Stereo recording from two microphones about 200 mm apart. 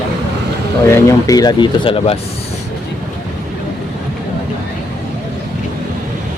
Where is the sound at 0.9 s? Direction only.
20° left (ahead or behind).